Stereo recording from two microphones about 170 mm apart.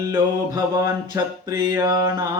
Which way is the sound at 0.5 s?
20° right (ahead or behind).